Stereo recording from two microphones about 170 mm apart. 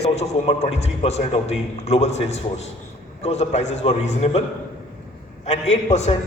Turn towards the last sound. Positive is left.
turn(degrees=40)  # may be behind; listen again after turning